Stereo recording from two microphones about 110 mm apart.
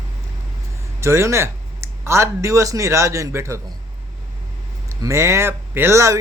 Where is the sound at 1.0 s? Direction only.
25° right (ahead or behind).